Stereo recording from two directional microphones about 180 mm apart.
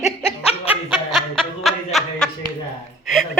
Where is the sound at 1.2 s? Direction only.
Centre (ahead or behind).